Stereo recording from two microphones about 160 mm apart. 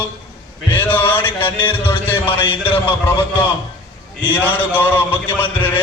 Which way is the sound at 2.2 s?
35° left (ahead or behind).